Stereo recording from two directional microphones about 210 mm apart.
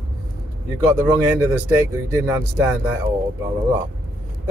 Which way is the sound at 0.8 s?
25° right (ahead or behind).